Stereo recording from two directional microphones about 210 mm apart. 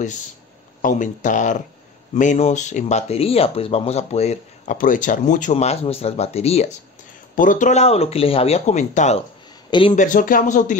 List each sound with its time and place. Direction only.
0.8 s speech: 35° left (ahead or behind)
9.9 s speech: 40° left (ahead or behind)